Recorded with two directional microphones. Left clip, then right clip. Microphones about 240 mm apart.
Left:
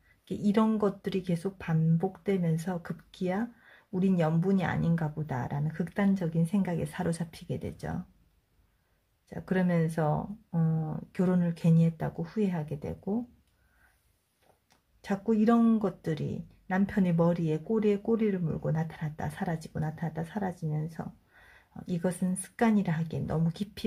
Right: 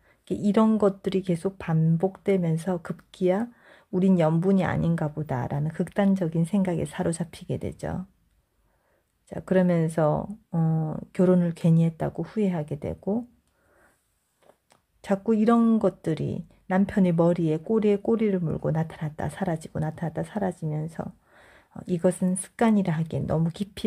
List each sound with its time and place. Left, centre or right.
0.2 s speech: right
9.3 s speech: right
15.0 s speech: right